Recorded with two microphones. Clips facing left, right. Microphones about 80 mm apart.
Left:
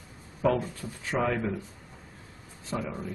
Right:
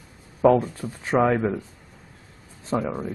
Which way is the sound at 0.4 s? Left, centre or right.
Right.